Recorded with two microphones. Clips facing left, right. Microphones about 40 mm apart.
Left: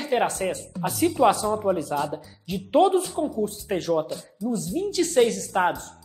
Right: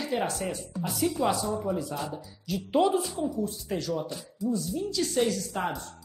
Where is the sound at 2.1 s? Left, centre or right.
Left.